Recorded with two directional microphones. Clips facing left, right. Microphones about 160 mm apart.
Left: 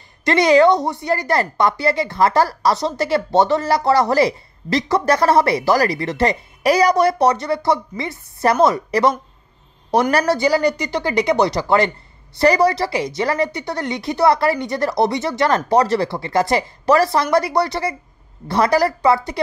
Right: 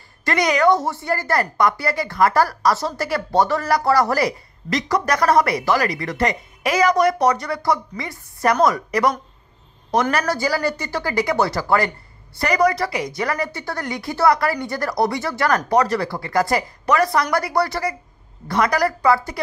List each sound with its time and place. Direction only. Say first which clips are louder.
0.2 s a woman's voice: left 5 dB; 25° left (ahead or behind)
10.1 s a woman's voice: left 5 dB; 25° left (ahead or behind)